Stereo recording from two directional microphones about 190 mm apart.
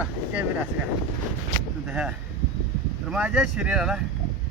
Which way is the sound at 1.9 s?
5° right (ahead or behind).